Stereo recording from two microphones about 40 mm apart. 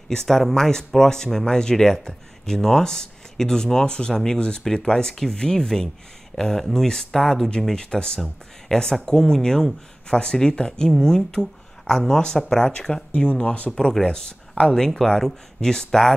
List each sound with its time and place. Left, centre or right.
0.1 s speech: centre
7.7 s speech: centre
13.1 s speech: left
13.7 s speech: centre
14.7 s speech: centre